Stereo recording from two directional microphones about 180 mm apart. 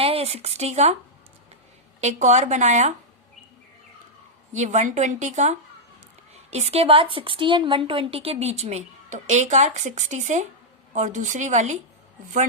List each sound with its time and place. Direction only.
0.0 s speech: 30° right (ahead or behind)
2.0 s a woman's voice: 40° right (ahead or behind)
4.5 s a woman's voice: 40° right (ahead or behind)